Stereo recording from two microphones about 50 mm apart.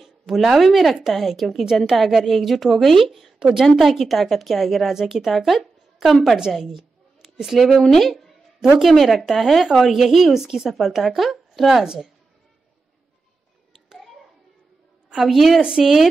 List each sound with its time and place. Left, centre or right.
0.0 s a woman's voice: centre
3.3 s a woman's voice: centre
3.6 s a woman's voice: centre
6.6 s a sound: centre
7.5 s a woman's voice: centre
13.8 s hands: centre
15.2 s a woman's voice: centre